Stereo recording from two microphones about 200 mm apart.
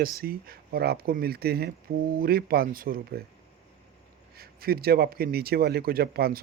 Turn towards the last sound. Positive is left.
turn(degrees=-50)  # may be behind; listen again after turning